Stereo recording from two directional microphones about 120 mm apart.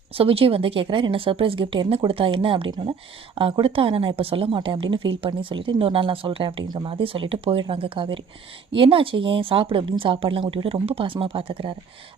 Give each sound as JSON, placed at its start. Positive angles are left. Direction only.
{"t": 0.1, "sound": "a woman's voice", "side_deg": -50}